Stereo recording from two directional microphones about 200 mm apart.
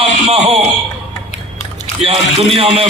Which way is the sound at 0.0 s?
30° right (ahead or behind).